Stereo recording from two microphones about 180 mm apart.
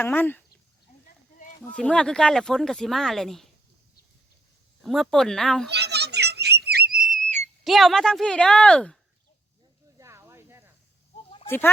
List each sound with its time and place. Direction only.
0.0 s speech: 10° left (ahead or behind)
1.6 s speech: 5° left (ahead or behind)
4.8 s speech: centre (ahead or behind)
5.6 s a sound: 70° right (ahead or behind)
7.0 s whistle: 45° right (ahead or behind)
7.6 s speech: centre (ahead or behind)
10.0 s a sound: 15° right (ahead or behind)
11.4 s speech: 10° left (ahead or behind)